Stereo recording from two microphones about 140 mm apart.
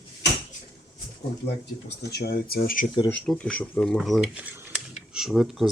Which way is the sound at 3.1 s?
5° left (ahead or behind).